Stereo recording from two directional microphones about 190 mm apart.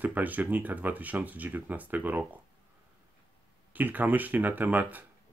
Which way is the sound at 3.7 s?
10° right (ahead or behind).